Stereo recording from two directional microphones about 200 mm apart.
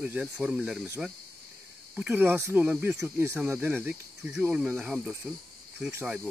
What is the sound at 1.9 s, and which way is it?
Speech, 10° right (ahead or behind).